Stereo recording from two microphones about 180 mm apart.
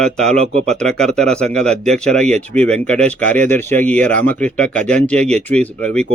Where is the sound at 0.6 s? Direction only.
5° left (ahead or behind).